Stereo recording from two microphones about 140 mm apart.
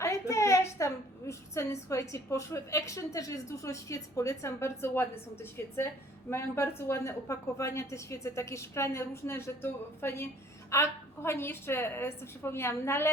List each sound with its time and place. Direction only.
0.0 s a woman's voice: 20° left (ahead or behind)